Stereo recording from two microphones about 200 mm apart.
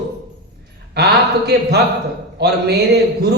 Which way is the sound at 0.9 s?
55° right (ahead or behind).